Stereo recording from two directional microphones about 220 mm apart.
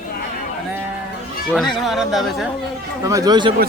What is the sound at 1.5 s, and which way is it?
Speech, centre (ahead or behind).